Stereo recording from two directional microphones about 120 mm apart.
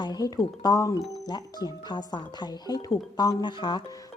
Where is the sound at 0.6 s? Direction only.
30° left (ahead or behind).